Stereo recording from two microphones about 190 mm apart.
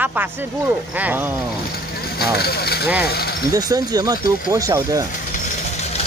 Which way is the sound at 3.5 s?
20° right (ahead or behind).